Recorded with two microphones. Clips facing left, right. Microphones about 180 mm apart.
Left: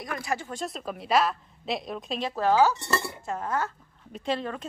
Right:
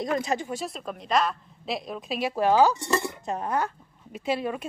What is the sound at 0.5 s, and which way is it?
A woman's voice, 5° right (ahead or behind).